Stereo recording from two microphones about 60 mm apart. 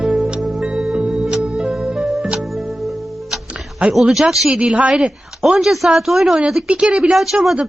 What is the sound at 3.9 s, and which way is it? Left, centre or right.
Speech, centre.